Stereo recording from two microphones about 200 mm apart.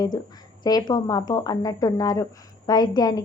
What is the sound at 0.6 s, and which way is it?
A woman's voice, 20° left (ahead or behind).